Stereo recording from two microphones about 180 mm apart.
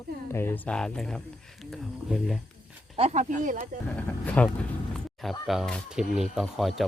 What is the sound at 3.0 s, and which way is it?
Speech, 40° right (ahead or behind).